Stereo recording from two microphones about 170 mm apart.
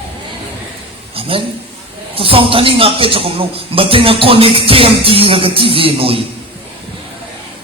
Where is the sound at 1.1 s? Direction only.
35° right (ahead or behind).